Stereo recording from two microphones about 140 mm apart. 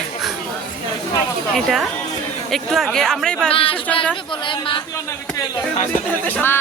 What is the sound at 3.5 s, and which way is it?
Speech, 40° left (ahead or behind).